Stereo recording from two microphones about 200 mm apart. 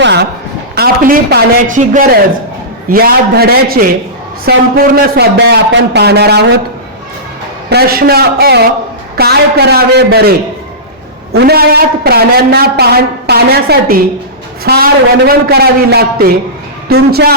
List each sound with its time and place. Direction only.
0.0 s a sound: 60° right (ahead or behind)
0.8 s a woman's voice: 50° right (ahead or behind)
7.7 s a woman's voice: 50° right (ahead or behind)